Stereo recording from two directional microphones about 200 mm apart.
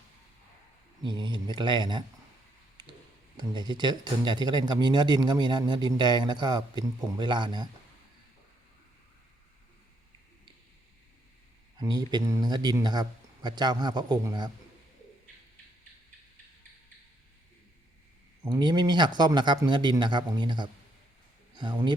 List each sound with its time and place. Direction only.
1.0 s speech: 25° right (ahead or behind)
3.3 s speech: 20° right (ahead or behind)
11.8 s speech: 20° right (ahead or behind)
18.4 s speech: 20° right (ahead or behind)
21.5 s a sound: 20° right (ahead or behind)